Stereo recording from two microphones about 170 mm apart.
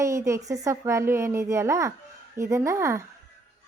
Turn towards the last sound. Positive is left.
turn(degrees=-15)  # may be behind; listen again after turning